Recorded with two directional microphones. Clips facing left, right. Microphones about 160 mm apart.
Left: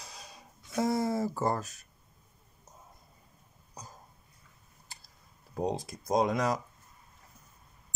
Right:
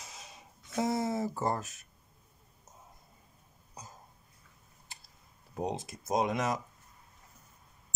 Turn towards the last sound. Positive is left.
turn(degrees=-20)  # may be behind; listen again after turning